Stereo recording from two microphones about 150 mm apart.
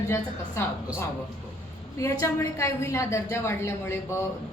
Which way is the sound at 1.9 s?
20° left (ahead or behind).